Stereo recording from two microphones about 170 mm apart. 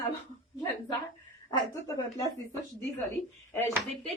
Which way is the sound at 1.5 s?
20° left (ahead or behind).